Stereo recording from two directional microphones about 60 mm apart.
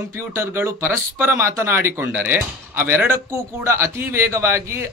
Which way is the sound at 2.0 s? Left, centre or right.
Right.